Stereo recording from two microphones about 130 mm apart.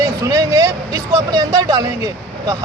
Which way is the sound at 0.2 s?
30° right (ahead or behind).